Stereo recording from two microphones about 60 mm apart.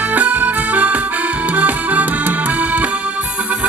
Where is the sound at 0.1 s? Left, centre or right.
Right.